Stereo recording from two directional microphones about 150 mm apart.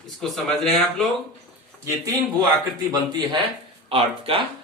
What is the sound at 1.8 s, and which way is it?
Speech, 20° right (ahead or behind).